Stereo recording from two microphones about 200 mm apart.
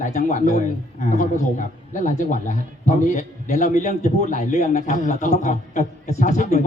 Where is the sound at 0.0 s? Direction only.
35° left (ahead or behind).